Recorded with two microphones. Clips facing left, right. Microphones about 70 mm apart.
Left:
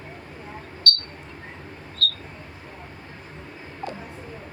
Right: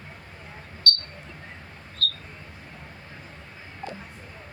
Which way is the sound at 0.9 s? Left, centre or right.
Left.